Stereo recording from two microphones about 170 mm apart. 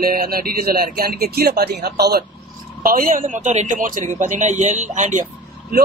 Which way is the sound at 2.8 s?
55° right (ahead or behind).